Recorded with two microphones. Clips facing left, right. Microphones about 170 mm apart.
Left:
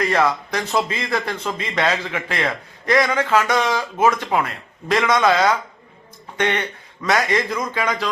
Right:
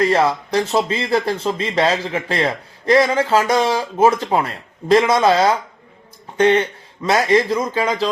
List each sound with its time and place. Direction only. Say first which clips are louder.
0.0 s a man's voice: right 3 dB; 30° right (ahead or behind)